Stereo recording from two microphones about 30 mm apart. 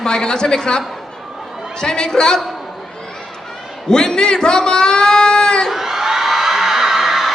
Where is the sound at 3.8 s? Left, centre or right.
Left.